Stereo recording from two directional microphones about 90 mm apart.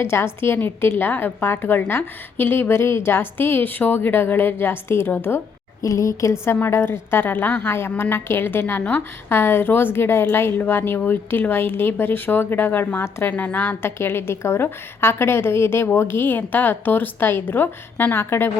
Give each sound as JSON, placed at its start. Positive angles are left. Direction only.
{"t": 0.0, "sound": "a woman's voice", "side_deg": 30}
{"t": 5.8, "sound": "a woman's voice", "side_deg": 35}